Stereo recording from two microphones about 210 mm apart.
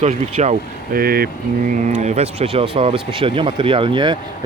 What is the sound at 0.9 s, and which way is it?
Speech, 45° right (ahead or behind).